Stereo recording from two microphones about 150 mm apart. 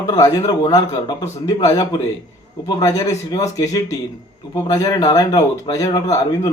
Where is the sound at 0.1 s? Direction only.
25° left (ahead or behind).